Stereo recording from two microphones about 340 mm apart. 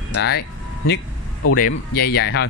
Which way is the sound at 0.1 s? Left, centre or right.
Left.